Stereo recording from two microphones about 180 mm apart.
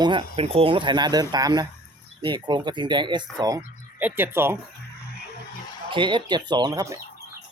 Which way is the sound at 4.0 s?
10° right (ahead or behind).